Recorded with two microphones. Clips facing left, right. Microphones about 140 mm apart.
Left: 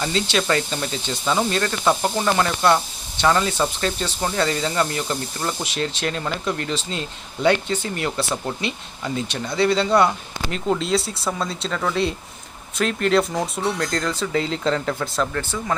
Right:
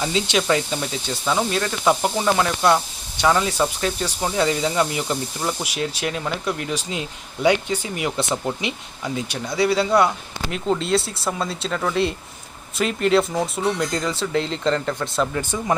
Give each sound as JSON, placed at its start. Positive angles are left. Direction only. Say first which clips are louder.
{"t": 0.0, "sound": "speech", "louder": "right 1 dB", "side_deg": -15}
{"t": 15.3, "sound": "speech", "louder": "right 2 dB", "side_deg": -15}